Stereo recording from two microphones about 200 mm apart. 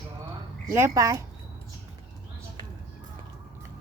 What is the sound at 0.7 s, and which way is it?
Speech, 15° right (ahead or behind).